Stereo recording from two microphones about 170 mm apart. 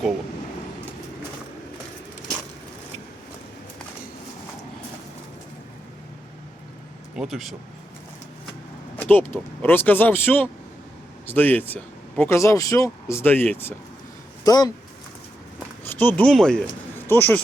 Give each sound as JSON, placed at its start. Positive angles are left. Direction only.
{"t": 7.2, "sound": "speech", "side_deg": 0}
{"t": 9.0, "sound": "speech", "side_deg": 10}
{"t": 14.4, "sound": "speech", "side_deg": 25}
{"t": 15.8, "sound": "speech", "side_deg": 10}